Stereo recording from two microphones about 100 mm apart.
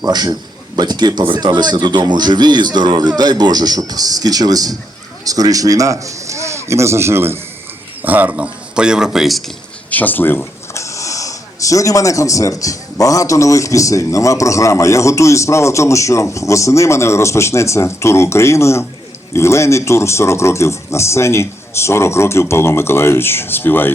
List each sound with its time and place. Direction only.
0.0 s speech: 40° right (ahead or behind); by 9.4 s centre (ahead or behind)
9.9 s a man's voice: 15° left (ahead or behind)